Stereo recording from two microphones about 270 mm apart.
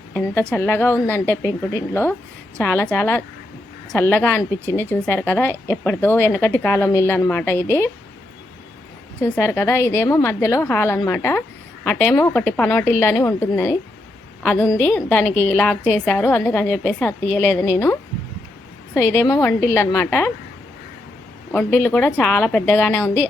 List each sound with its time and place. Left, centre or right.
0.1 s a woman's voice: centre
9.2 s a woman's voice: centre
18.9 s a woman's voice: centre
21.5 s a woman's voice: centre